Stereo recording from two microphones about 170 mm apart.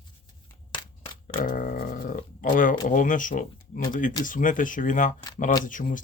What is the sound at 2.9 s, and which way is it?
Speech, 50° left (ahead or behind).